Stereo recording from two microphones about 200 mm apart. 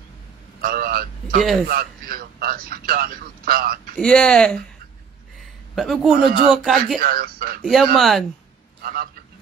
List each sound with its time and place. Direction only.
0.6 s vehicle: 45° right (ahead or behind)
1.7 s a man's voice: 45° right (ahead or behind)
3.9 s speech: 5° left (ahead or behind)
5.8 s speech: centre (ahead or behind)
7.0 s speech: 50° right (ahead or behind)
7.6 s speech: centre (ahead or behind)
8.8 s speech: 45° right (ahead or behind)